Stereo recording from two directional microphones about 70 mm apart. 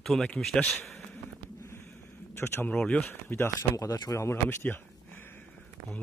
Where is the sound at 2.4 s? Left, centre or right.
Left.